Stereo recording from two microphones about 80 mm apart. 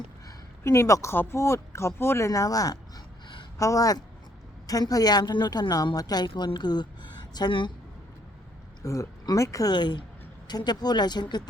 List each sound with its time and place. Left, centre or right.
0.6 s speech: left
1.1 s speech: left
1.4 s a woman's voice: left
8.8 s speech: left
9.7 s a woman's voice: left